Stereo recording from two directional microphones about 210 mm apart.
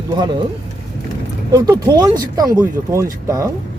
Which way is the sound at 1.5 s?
15° right (ahead or behind).